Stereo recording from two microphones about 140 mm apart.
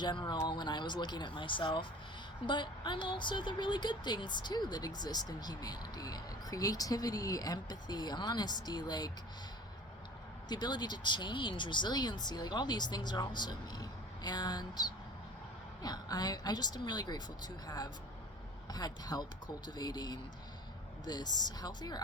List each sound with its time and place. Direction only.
0.0 s speech: 35° left (ahead or behind)
10.5 s speech: 30° left (ahead or behind)